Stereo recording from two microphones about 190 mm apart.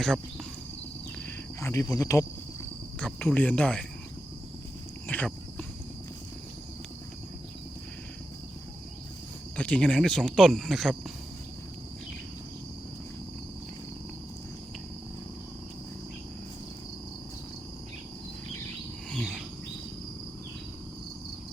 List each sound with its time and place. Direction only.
1.2 s cricket: 15° left (ahead or behind)
3.0 s speech: 5° left (ahead or behind)
5.0 s a sound: 10° left (ahead or behind)
9.6 s speech: 5° left (ahead or behind)
19.1 s insect: centre (ahead or behind)